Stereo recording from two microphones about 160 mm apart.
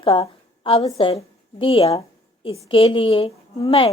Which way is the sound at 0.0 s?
35° left (ahead or behind).